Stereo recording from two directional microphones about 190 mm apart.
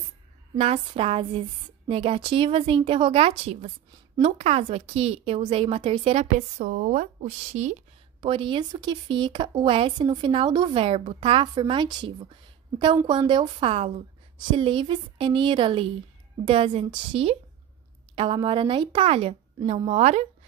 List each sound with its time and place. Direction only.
0.6 s a woman's voice: 30° right (ahead or behind)
8.2 s speech: 25° right (ahead or behind)